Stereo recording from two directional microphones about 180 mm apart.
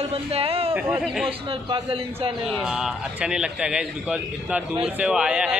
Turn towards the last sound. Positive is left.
turn(degrees=-5)  # may be behind; listen again after turning